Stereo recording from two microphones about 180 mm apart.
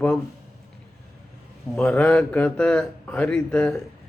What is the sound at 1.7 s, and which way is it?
A man's voice, 10° left (ahead or behind).